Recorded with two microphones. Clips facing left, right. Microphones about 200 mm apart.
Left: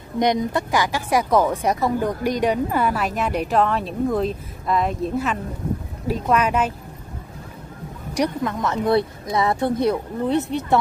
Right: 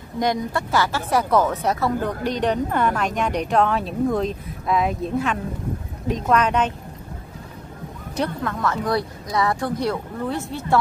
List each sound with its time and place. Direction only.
0.2 s a woman's voice: 20° left (ahead or behind)
8.1 s speech: 15° left (ahead or behind)